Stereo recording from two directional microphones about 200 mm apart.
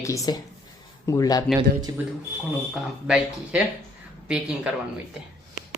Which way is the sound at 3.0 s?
5° right (ahead or behind).